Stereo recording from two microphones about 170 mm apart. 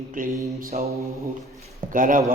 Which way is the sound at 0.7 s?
45° right (ahead or behind).